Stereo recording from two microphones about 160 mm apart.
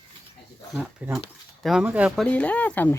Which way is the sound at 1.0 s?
10° right (ahead or behind).